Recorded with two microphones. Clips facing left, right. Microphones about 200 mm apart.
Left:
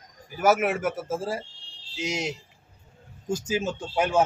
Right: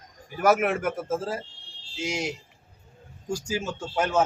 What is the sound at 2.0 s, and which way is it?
Speech, 20° left (ahead or behind).